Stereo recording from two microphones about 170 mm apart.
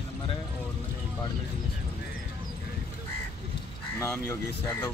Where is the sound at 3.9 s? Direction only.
15° left (ahead or behind).